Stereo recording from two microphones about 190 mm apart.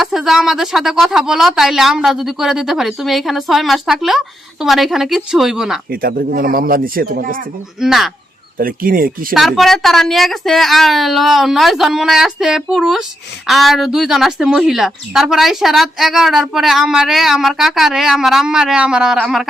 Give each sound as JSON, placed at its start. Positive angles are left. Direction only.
{"t": 0.0, "sound": "speech", "side_deg": 0}
{"t": 5.9, "sound": "speech", "side_deg": -50}
{"t": 7.8, "sound": "speech", "side_deg": 0}
{"t": 8.5, "sound": "speech", "side_deg": -50}
{"t": 9.3, "sound": "speech", "side_deg": 0}